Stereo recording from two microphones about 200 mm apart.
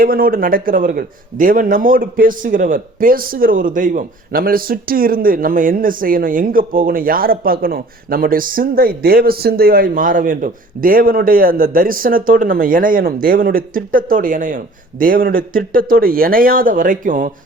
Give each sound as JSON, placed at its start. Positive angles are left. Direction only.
{"t": 0.0, "sound": "a man's voice", "side_deg": -45}